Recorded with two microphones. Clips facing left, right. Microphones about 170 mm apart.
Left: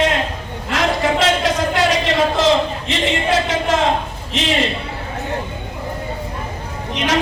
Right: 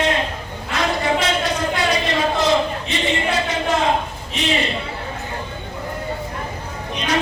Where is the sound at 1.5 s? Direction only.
90° left.